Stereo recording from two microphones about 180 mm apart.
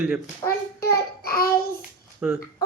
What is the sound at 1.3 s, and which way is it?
Child singing, 55° left (ahead or behind).